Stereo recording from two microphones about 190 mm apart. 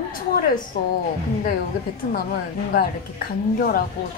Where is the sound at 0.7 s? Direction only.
55° left (ahead or behind).